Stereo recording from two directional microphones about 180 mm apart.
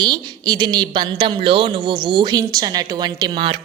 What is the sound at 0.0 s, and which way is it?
A woman's voice, 25° right (ahead or behind).